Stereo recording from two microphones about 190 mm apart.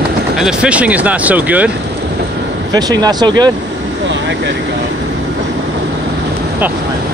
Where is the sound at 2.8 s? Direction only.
20° right (ahead or behind).